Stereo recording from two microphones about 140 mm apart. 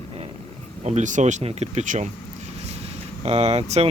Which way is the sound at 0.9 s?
60° right (ahead or behind).